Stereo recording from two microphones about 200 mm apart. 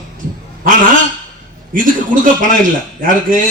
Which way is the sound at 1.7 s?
40° right (ahead or behind).